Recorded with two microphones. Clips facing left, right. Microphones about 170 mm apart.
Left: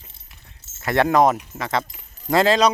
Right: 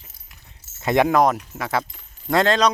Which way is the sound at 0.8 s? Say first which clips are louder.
Right 2 dB; 20° right (ahead or behind).